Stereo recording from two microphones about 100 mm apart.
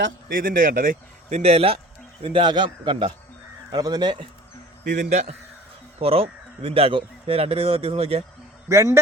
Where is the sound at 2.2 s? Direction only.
60° right (ahead or behind).